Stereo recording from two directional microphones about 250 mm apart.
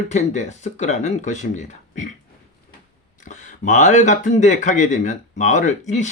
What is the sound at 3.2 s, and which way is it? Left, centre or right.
Speech, left.